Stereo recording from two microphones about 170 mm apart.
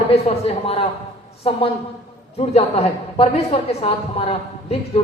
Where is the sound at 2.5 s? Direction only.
40° left (ahead or behind).